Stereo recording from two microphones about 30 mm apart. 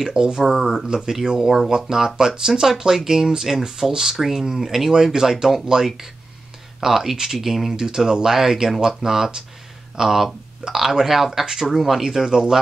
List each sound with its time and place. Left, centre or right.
0.0 s speech: right
2.9 s speech: centre
7.7 s speech: centre
12.0 s speech: centre